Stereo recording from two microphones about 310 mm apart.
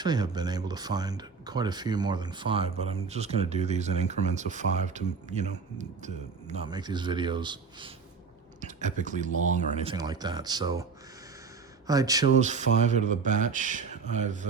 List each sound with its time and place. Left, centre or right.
0.0 s speech: centre
11.9 s speech: centre
12.4 s speech: right